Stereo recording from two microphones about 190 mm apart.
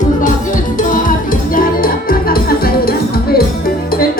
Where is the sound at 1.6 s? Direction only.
50° left (ahead or behind).